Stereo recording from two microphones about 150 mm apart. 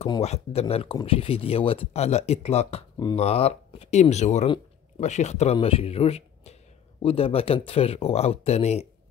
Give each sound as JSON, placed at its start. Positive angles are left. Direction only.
{"t": 0.0, "sound": "speech", "side_deg": 45}